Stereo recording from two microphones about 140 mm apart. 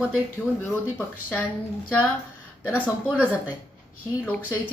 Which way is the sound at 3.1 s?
10° right (ahead or behind).